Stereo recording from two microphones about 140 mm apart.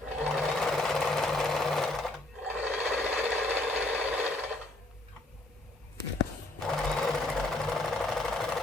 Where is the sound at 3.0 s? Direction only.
10° right (ahead or behind).